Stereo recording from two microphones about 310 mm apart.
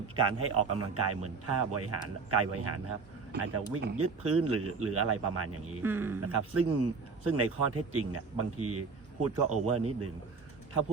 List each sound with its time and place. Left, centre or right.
0.2 s a man's voice: right
5.8 s speech: centre
6.2 s a man's voice: right